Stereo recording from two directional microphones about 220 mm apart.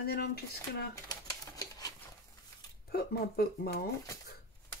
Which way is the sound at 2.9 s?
45° left (ahead or behind).